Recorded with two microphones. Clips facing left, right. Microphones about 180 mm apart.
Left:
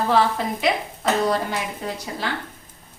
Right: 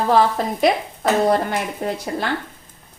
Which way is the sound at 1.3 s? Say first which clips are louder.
Right 4 dB; 55° right (ahead or behind).